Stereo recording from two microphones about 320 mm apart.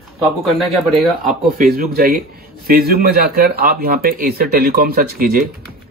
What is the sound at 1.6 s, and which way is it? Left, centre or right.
Speech, right.